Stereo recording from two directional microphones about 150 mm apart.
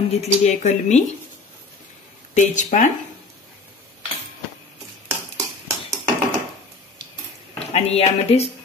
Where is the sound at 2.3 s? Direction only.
55° left (ahead or behind).